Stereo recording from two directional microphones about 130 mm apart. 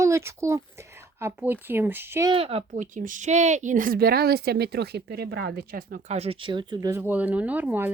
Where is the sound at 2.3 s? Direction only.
50° right (ahead or behind).